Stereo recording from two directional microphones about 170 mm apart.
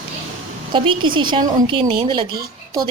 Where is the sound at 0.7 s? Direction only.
30° right (ahead or behind).